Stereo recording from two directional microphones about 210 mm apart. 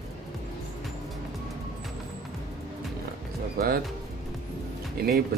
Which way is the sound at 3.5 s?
45° right (ahead or behind).